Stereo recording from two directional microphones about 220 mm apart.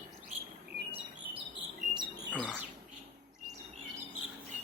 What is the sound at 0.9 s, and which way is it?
Bird, 20° right (ahead or behind).